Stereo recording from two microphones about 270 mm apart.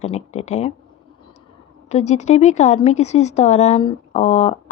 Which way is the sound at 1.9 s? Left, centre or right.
Left.